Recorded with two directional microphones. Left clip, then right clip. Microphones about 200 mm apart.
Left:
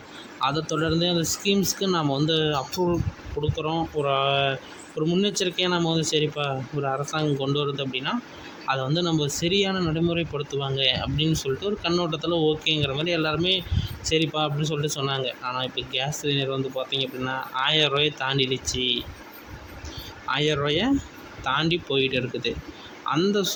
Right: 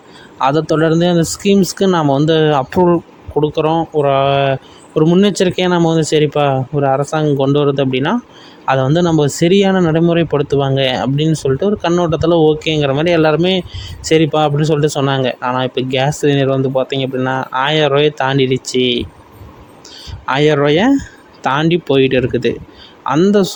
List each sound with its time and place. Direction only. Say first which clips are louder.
0.3 s speech: right 12 dB; 45° right (ahead or behind)
20.2 s speech: right 12 dB; 45° right (ahead or behind)